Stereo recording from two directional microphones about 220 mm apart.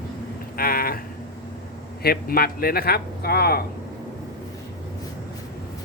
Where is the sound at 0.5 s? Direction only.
40° left (ahead or behind).